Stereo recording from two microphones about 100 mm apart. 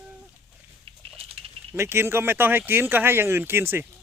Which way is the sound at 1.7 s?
25° right (ahead or behind).